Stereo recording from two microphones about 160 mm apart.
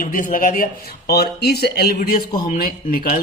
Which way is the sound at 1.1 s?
85° left.